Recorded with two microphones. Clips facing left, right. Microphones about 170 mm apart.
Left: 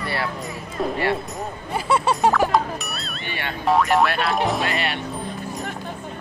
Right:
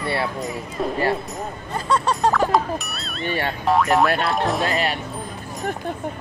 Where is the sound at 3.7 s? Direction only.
Centre (ahead or behind).